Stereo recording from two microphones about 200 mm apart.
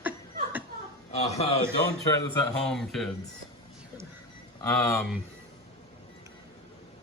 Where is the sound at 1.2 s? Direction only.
30° left (ahead or behind).